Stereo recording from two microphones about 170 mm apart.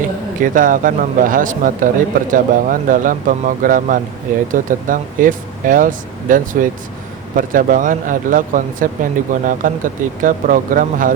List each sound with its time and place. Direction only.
0.3 s speech: 50° right (ahead or behind)